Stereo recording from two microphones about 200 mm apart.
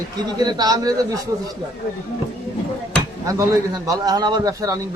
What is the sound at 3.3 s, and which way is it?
A man's voice, 15° right (ahead or behind).